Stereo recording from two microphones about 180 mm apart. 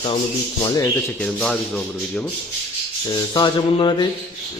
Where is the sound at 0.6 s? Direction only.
20° left (ahead or behind).